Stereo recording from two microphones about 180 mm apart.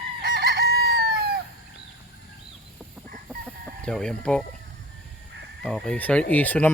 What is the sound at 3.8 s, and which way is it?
Speech, 5° left (ahead or behind).